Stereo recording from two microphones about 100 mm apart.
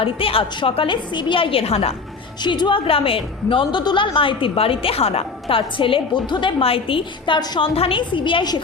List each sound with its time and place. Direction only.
0.0 s a woman's voice: 65° left (ahead or behind); by 2.0 s 85° left
2.4 s a woman's voice: 50° left (ahead or behind)
6.6 s a woman's voice: 70° left (ahead or behind); by 7.6 s 45° left (ahead or behind)
7.6 s a woman's voice: 65° left (ahead or behind)